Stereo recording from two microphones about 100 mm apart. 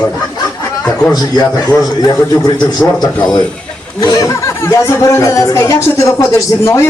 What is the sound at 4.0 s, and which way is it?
A woman's voice, 35° left (ahead or behind).